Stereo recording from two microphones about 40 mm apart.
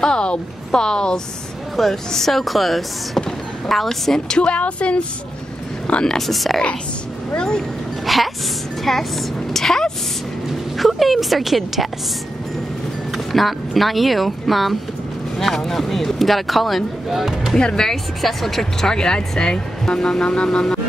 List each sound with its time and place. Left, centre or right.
0.0 s speech: left
1.8 s speech: centre
4.3 s a woman's voice: left
6.0 s speech: centre
7.3 s speech: left
8.1 s speech: centre
10.8 s speech: centre
13.1 s speech: centre
17.6 s speech: left
17.8 s speech: centre